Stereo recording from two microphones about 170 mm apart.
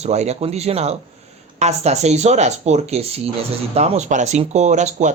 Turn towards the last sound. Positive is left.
turn(degrees=-45)  # may be behind; listen again after turning